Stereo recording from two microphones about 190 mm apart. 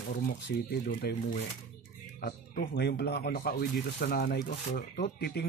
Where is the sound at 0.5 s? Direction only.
55° left (ahead or behind).